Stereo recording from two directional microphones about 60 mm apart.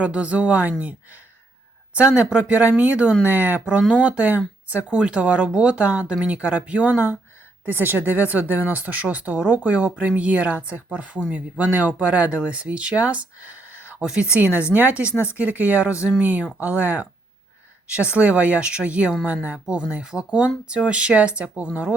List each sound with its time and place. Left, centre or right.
0.0 s speech: right
2.0 s speech: centre
7.6 s speech: right